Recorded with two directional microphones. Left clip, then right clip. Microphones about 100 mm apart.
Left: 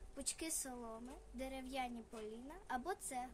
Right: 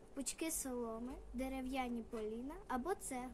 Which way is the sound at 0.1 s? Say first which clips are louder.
Right 2 dB; 25° right (ahead or behind).